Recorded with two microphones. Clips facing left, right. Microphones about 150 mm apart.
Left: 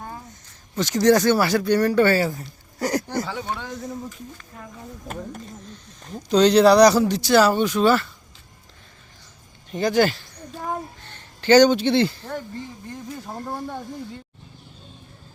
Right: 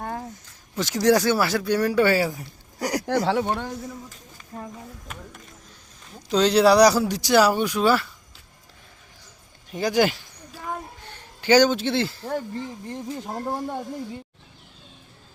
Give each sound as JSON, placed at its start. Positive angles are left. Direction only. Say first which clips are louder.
{"t": 0.0, "sound": "a sound", "louder": "right 5 dB", "side_deg": -60}
{"t": 0.8, "sound": "speech", "louder": "left 2 dB", "side_deg": -5}
{"t": 3.1, "sound": "speech", "louder": "right 6 dB", "side_deg": -75}
{"t": 4.5, "sound": "speech", "louder": "right 8 dB", "side_deg": -35}
{"t": 6.3, "sound": "speech", "louder": "left 3 dB", "side_deg": -5}
{"t": 9.7, "sound": "speech", "louder": "left 2 dB", "side_deg": -10}
{"t": 12.9, "sound": "speech", "louder": "right 3 dB", "side_deg": -25}